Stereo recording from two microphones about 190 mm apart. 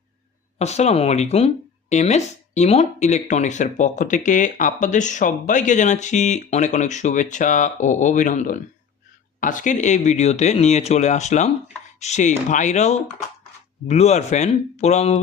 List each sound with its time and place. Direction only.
0.6 s speech: 35° left (ahead or behind)